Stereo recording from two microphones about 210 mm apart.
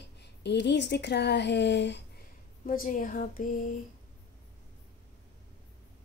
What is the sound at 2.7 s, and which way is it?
Speech, 40° left (ahead or behind).